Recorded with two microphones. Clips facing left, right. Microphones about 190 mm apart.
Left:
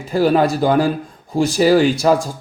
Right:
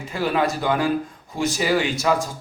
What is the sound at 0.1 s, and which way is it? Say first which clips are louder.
Speech: left 8 dB; 35° left (ahead or behind).